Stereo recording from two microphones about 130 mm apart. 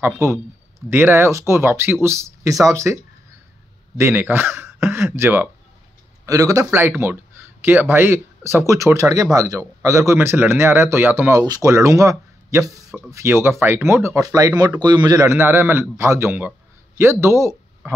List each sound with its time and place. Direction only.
0.0 s speech: 20° right (ahead or behind)
4.0 s speech: 15° right (ahead or behind)
11.4 s speech: 30° right (ahead or behind)